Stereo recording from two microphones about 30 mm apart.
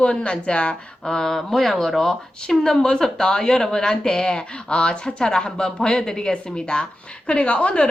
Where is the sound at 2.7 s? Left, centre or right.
Centre.